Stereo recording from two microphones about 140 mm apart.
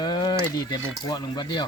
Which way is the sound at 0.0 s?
30° left (ahead or behind).